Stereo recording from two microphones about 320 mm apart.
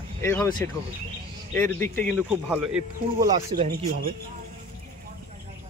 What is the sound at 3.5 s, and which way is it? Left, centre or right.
Speech, right.